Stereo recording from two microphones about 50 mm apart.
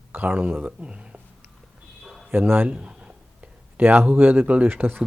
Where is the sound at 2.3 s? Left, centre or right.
Right.